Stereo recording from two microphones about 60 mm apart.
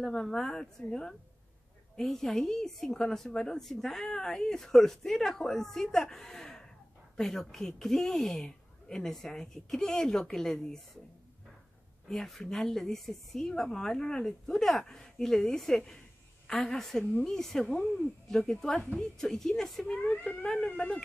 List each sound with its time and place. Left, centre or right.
0.0 s a woman's voice: centre
12.1 s a woman's voice: centre
18.8 s speech: centre
19.1 s a woman's voice: centre
19.9 s speech: left